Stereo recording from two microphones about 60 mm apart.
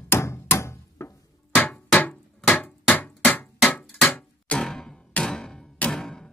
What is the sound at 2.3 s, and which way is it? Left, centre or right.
Hammer, left.